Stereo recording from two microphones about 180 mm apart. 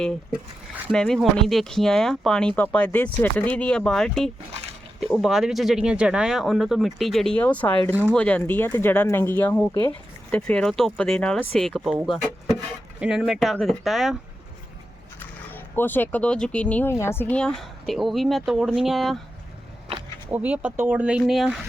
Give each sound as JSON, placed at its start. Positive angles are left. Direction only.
{"t": 0.9, "sound": "speech", "side_deg": 5}
{"t": 15.2, "sound": "speech", "side_deg": 10}
{"t": 20.3, "sound": "speech", "side_deg": -10}